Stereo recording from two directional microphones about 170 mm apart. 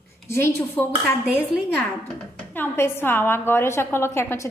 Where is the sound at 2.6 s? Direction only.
15° left (ahead or behind).